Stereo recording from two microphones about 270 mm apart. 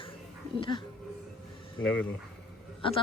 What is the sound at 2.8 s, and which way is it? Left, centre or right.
Speech, centre.